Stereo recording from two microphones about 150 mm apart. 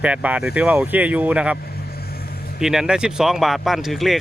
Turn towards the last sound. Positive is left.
turn(degrees=0)  # may be behind; listen again after turning